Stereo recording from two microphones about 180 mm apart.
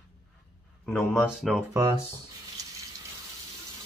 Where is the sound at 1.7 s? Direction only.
20° right (ahead or behind).